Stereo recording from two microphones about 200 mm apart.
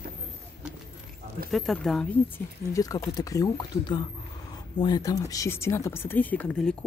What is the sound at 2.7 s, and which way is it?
Speech, 15° left (ahead or behind).